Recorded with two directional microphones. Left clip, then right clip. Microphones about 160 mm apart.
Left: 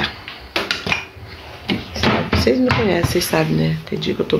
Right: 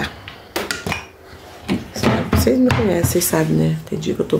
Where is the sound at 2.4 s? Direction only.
20° right (ahead or behind).